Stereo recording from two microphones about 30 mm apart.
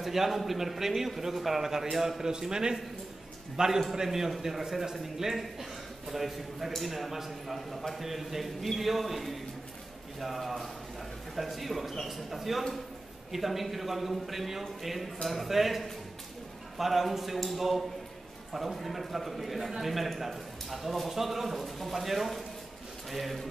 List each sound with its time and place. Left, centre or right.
0.0 s a man's voice: centre
2.2 s a man's voice: right; by 23.4 s centre